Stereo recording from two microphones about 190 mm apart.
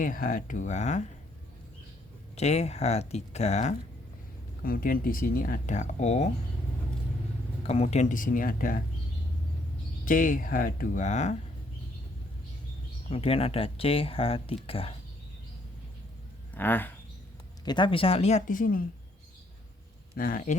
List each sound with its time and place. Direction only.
0.0 s speech: 45° left (ahead or behind)
2.3 s speech: 35° left (ahead or behind)
4.6 s speech: 50° left (ahead or behind)
7.6 s speech: 35° left (ahead or behind); by 8.8 s 50° left (ahead or behind)
10.1 s speech: 45° left (ahead or behind)
13.1 s speech: 30° left (ahead or behind)
16.6 s speech: 10° left (ahead or behind)
17.7 s speech: 25° left (ahead or behind); by 18.8 s 45° left (ahead or behind)
20.1 s speech: 45° left (ahead or behind)